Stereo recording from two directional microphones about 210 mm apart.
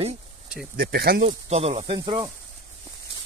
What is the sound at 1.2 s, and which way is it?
Speech, 30° right (ahead or behind).